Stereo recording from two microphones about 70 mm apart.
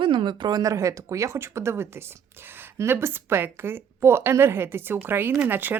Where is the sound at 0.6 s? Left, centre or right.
Right.